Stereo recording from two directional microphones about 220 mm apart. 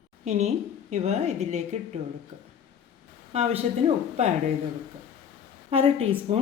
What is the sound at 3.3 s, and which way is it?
Speech, 25° right (ahead or behind).